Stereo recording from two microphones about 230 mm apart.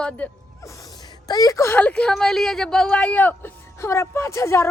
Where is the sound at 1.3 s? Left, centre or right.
Centre.